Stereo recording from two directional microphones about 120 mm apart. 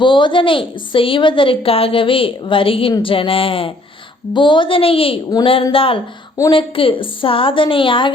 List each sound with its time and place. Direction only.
0.0 s a woman's voice: 40° left (ahead or behind)